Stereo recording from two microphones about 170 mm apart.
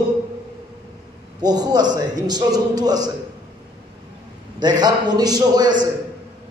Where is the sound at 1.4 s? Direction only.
25° right (ahead or behind).